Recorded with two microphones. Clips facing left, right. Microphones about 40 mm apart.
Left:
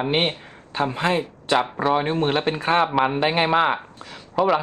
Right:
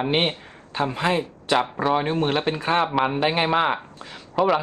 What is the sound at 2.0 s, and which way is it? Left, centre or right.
Speech, left.